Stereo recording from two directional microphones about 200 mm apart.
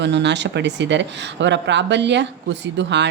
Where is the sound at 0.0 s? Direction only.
60° right (ahead or behind).